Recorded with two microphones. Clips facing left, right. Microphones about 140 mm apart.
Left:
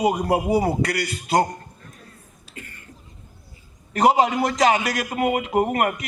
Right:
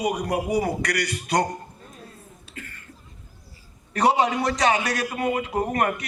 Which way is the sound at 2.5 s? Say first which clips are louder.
Even; 20° left (ahead or behind).